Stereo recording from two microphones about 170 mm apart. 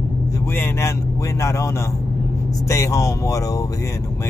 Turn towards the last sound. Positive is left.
turn(degrees=20)  # may be behind; listen again after turning